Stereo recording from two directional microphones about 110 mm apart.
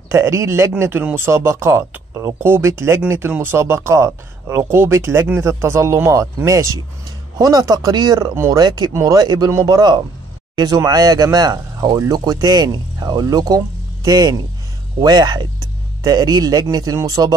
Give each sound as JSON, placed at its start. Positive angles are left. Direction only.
{"t": 0.1, "sound": "speech", "side_deg": -25}
{"t": 10.5, "sound": "a sound", "side_deg": -35}
{"t": 10.9, "sound": "speech", "side_deg": -35}